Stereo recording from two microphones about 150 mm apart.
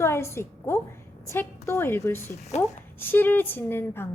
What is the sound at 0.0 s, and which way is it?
A woman's voice, 15° left (ahead or behind).